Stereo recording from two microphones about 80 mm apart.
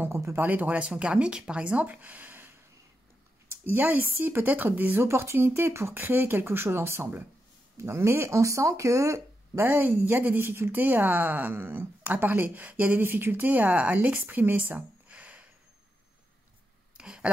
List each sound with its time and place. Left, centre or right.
0.0 s speech: right
0.5 s speech: centre; by 9.2 s right
9.6 s speech: right
16.9 s a sound: centre